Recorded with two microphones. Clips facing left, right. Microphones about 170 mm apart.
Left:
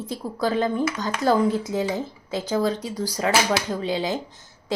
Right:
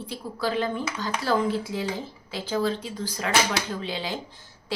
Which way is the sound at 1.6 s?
20° left (ahead or behind).